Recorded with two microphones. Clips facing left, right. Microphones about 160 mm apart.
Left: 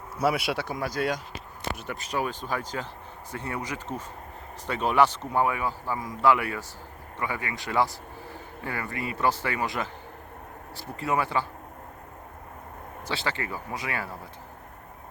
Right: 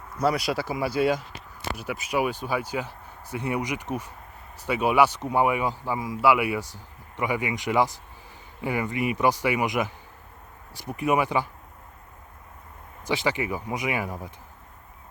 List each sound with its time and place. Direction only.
0.2 s a man's voice: 5° left (ahead or behind); by 11.4 s 15° right (ahead or behind)
13.1 s a man's voice: 15° right (ahead or behind)